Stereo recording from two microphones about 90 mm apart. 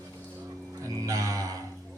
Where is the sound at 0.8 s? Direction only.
35° right (ahead or behind).